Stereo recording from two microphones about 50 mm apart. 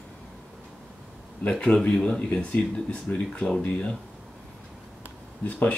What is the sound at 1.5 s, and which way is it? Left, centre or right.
Speech, left.